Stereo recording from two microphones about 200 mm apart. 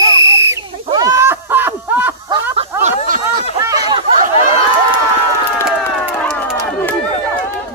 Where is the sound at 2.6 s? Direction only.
40° right (ahead or behind).